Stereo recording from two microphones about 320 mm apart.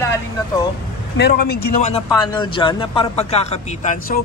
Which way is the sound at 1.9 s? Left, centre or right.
Centre.